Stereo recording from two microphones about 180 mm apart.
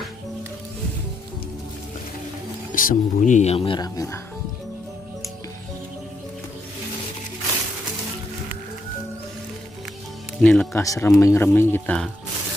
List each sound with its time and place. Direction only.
2.7 s speech: 50° left (ahead or behind); by 4.2 s 20° left (ahead or behind)
10.4 s speech: 5° left (ahead or behind)